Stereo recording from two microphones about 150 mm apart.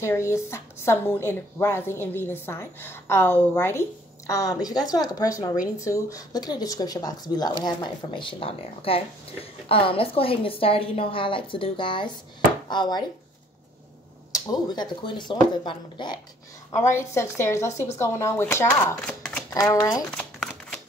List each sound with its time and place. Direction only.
0.0 s a woman's voice: 20° left (ahead or behind)
14.3 s speech: 25° left (ahead or behind)
16.9 s a woman's voice: 20° left (ahead or behind)
19.5 s speech: 20° left (ahead or behind)
20.1 s crumpling: 5° left (ahead or behind)